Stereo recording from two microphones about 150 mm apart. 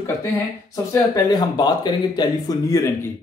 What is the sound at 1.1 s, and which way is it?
Speech, 25° left (ahead or behind).